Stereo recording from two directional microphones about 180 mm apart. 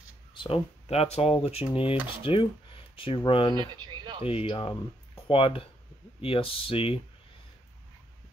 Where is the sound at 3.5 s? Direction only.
25° right (ahead or behind).